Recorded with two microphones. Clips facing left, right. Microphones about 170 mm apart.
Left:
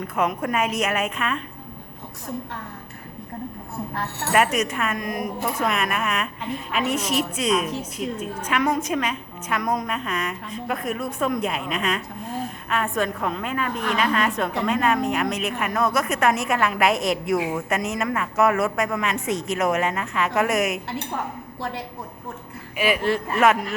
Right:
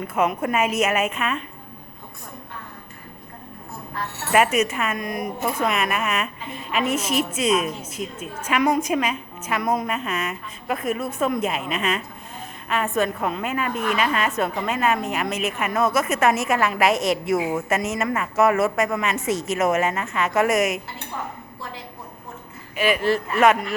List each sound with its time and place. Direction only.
0.2 s a woman's voice: 5° right (ahead or behind)
4.3 s a woman's voice: 5° right (ahead or behind)
21.6 s a woman's voice: 65° left (ahead or behind)
22.8 s a woman's voice: 5° left (ahead or behind)